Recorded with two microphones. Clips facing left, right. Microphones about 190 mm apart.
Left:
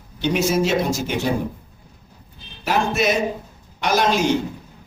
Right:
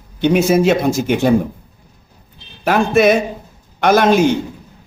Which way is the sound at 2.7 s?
55° right (ahead or behind).